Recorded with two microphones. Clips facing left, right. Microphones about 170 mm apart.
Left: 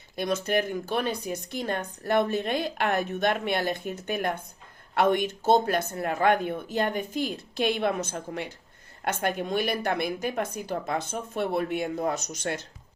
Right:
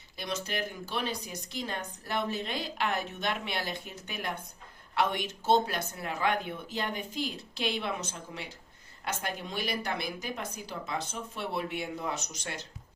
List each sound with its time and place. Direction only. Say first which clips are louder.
0.2 s speech: left 9 dB; 50° left (ahead or behind)